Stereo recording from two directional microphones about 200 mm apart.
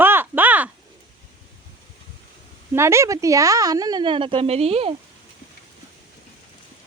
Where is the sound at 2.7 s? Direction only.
15° right (ahead or behind); by 4.9 s 30° right (ahead or behind).